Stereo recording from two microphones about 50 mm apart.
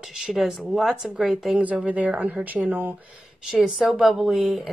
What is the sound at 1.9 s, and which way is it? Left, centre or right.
Speech, right.